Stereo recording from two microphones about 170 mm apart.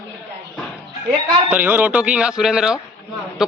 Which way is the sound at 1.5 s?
10° right (ahead or behind).